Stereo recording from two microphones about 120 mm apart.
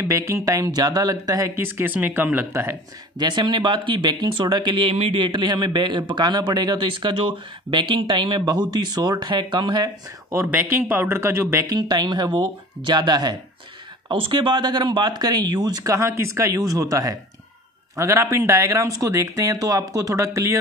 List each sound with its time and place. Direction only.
0.0 s speech: 25° right (ahead or behind)
3.2 s speech: 40° right (ahead or behind)
10.3 s speech: 20° right (ahead or behind)